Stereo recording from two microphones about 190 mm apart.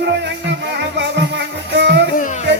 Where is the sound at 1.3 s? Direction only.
65° right (ahead or behind).